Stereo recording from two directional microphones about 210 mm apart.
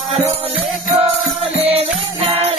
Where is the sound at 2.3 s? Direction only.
30° right (ahead or behind).